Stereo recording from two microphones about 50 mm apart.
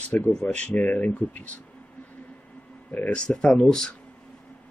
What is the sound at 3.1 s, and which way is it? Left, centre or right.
Speech, centre.